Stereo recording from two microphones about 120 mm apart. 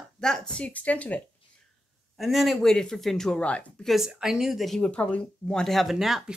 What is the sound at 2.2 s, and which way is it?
Speech, centre (ahead or behind).